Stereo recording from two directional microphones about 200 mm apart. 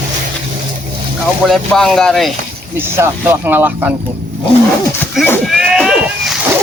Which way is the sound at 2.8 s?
10° right (ahead or behind).